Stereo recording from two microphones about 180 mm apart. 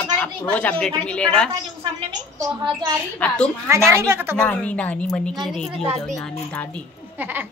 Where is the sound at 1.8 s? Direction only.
30° right (ahead or behind).